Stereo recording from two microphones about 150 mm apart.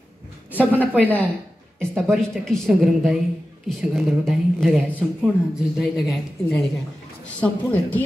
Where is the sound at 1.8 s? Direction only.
5° left (ahead or behind).